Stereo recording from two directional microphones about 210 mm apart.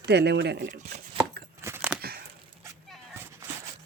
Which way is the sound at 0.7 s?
35° right (ahead or behind).